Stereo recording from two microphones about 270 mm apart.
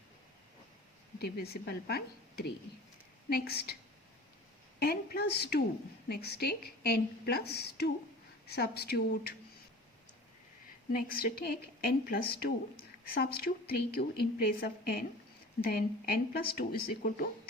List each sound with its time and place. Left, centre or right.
1.2 s speech: left
4.8 s speech: left
10.9 s speech: left